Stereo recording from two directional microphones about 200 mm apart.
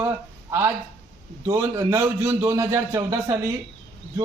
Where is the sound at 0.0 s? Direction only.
10° right (ahead or behind).